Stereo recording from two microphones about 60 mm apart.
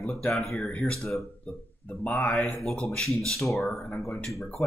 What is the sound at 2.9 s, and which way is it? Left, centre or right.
Speech, centre.